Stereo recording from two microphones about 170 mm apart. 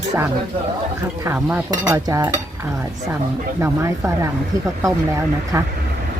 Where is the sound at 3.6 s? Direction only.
15° right (ahead or behind).